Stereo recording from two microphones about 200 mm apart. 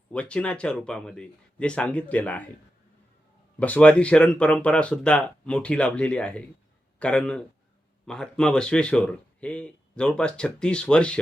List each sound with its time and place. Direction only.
0.1 s a man's voice: 5° left (ahead or behind)
3.6 s a man's voice: 5° left (ahead or behind)